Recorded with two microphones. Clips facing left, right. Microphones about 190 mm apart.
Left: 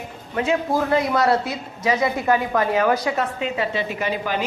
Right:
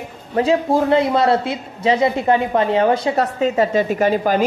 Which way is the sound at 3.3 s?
40° right (ahead or behind).